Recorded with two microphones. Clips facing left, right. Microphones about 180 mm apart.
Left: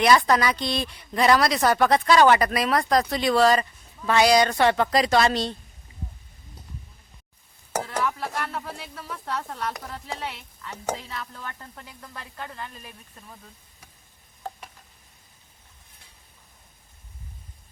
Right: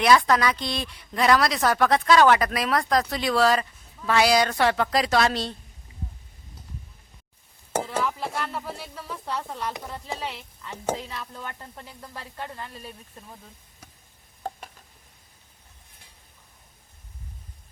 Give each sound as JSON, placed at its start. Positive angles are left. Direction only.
{"t": 0.0, "sound": "speech", "side_deg": 0}
{"t": 7.8, "sound": "speech", "side_deg": -5}